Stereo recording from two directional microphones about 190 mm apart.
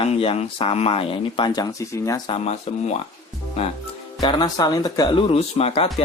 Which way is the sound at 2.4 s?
35° left (ahead or behind).